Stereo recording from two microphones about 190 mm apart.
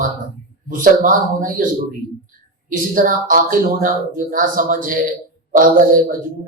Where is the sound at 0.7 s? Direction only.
45° right (ahead or behind).